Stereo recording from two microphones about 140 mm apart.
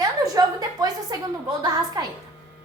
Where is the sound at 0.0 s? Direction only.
25° right (ahead or behind).